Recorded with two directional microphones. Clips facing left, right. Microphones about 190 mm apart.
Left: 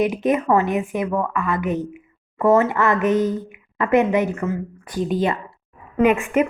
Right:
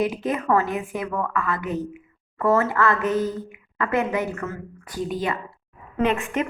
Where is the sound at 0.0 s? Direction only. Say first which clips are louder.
Left 5 dB; 20° left (ahead or behind).